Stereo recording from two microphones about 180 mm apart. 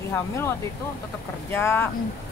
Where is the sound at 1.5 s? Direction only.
10° left (ahead or behind).